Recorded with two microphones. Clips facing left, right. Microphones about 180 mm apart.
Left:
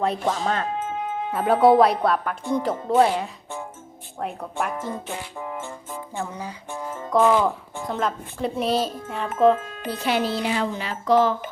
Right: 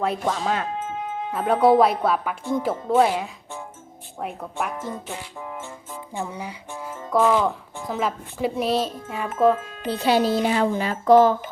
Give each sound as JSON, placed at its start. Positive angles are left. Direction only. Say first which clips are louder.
{"t": 0.0, "sound": "a woman's voice", "louder": "left 1 dB", "side_deg": 0}
{"t": 0.8, "sound": "music", "louder": "left 2 dB", "side_deg": 60}
{"t": 1.3, "sound": "a woman's voice", "louder": "left 1 dB", "side_deg": 0}
{"t": 5.1, "sound": "music", "louder": "left 2 dB", "side_deg": 55}
{"t": 6.1, "sound": "a woman's voice", "louder": "right 2 dB", "side_deg": -10}
{"t": 9.8, "sound": "speech", "louder": "right 5 dB", "side_deg": -30}